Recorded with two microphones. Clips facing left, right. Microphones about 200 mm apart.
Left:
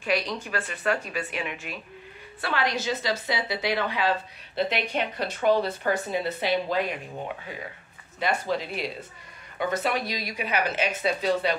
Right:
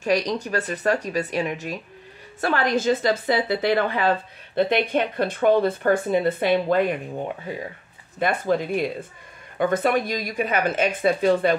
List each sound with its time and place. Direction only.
0.0 s speech: 40° right (ahead or behind)
8.2 s speech: 50° right (ahead or behind)